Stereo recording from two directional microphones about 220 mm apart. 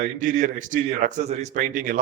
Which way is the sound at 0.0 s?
40° right (ahead or behind).